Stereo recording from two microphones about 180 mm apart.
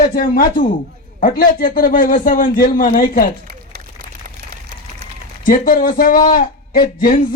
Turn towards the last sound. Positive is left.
turn(degrees=50)  # may be behind; listen again after turning